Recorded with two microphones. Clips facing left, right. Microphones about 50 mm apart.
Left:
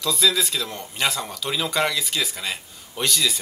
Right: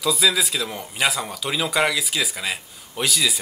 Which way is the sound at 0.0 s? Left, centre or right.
Centre.